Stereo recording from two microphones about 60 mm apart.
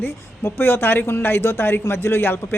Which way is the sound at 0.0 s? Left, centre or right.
Left.